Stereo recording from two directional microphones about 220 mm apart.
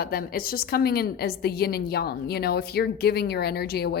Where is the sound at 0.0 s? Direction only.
45° left (ahead or behind).